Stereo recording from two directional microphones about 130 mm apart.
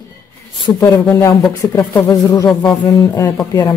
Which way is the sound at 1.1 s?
20° left (ahead or behind).